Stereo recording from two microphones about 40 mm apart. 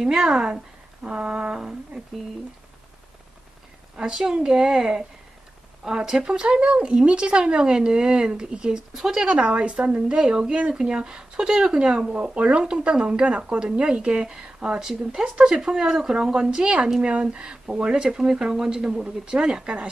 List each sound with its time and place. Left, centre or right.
0.0 s speech: centre
3.9 s speech: centre